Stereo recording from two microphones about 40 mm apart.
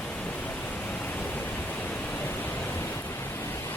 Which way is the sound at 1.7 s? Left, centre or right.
Left.